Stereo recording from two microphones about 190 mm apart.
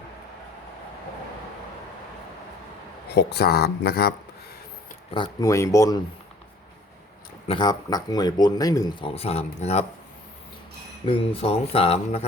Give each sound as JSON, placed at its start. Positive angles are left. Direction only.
{"t": 3.2, "sound": "speech", "side_deg": 60}
{"t": 5.1, "sound": "speech", "side_deg": 20}
{"t": 7.4, "sound": "speech", "side_deg": 25}
{"t": 11.0, "sound": "speech", "side_deg": 30}